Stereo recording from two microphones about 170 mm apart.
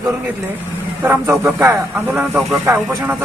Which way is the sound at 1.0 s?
15° right (ahead or behind).